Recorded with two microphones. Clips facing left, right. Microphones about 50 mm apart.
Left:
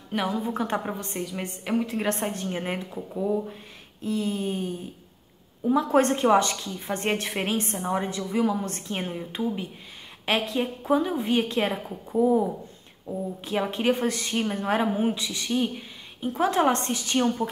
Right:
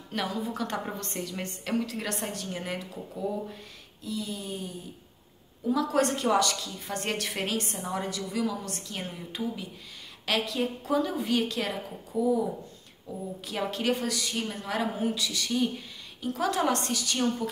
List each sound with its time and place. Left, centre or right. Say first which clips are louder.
0.3 s a woman's voice: left 5 dB; left
4.0 s a woman's voice: left 8 dB; left